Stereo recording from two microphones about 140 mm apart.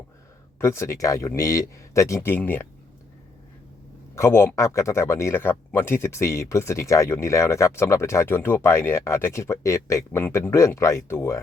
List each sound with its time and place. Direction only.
0.6 s speech: 20° left (ahead or behind)
4.1 s speech: 20° left (ahead or behind)